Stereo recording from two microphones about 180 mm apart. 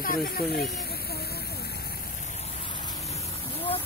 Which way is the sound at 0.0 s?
55° left (ahead or behind).